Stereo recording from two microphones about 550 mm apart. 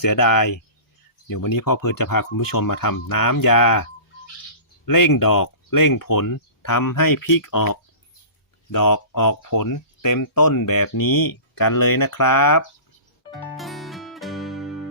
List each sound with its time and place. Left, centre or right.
0.1 s speech: left
4.9 s speech: left
13.5 s music: centre